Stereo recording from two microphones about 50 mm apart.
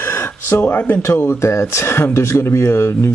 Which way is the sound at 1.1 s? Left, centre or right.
Left.